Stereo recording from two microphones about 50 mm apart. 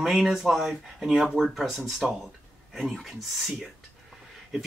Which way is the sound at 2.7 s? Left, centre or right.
Centre.